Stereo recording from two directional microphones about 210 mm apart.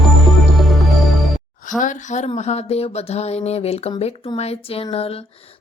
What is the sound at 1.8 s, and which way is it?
A woman's voice, 35° left (ahead or behind).